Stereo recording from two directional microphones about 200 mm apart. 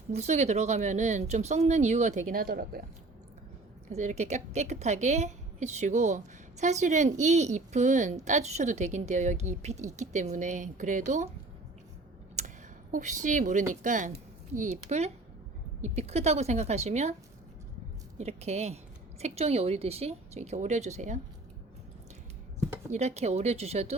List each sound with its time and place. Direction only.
0.1 s a woman's voice: 35° right (ahead or behind)
3.8 s a woman's voice: 35° right (ahead or behind)
12.4 s a sound: 35° right (ahead or behind)
12.9 s a woman's voice: 40° right (ahead or behind)
18.2 s a woman's voice: 35° right (ahead or behind)
22.9 s a woman's voice: 35° right (ahead or behind)